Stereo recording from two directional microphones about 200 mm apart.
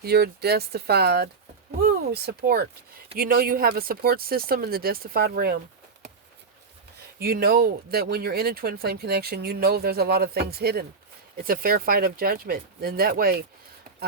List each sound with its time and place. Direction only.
0.0 s speech: 50° right (ahead or behind)
7.2 s speech: 50° right (ahead or behind)